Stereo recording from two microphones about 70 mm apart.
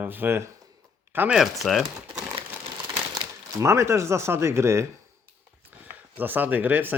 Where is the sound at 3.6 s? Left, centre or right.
Right.